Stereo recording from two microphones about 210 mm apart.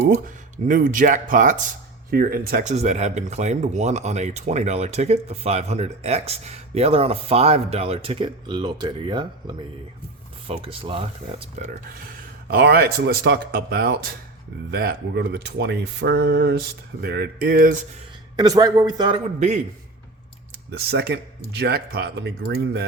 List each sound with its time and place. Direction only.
0.1 s speech: 40° right (ahead or behind)
12.0 s speech: 50° right (ahead or behind)
18.3 s speech: 20° right (ahead or behind)
19.4 s speech: 35° right (ahead or behind)
20.7 s speech: 50° right (ahead or behind)